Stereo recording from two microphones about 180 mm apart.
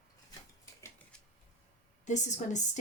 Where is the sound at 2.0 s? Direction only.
40° left (ahead or behind).